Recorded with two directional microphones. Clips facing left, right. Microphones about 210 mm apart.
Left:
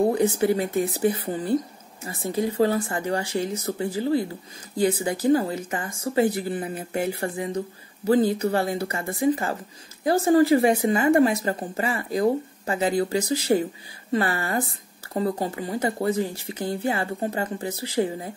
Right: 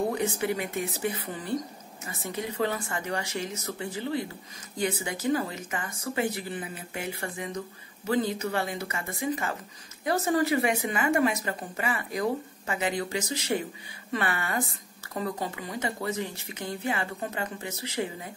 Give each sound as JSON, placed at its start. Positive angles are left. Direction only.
{"t": 0.1, "sound": "speech", "side_deg": 35}